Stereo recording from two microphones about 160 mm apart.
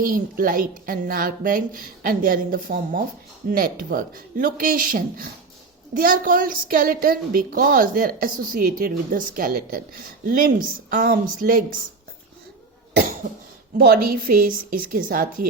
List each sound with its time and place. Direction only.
0.0 s a woman's voice: 60° right (ahead or behind)
13.7 s a woman's voice: 65° right (ahead or behind)